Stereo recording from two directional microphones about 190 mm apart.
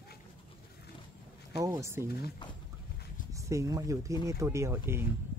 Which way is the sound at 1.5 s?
15° right (ahead or behind).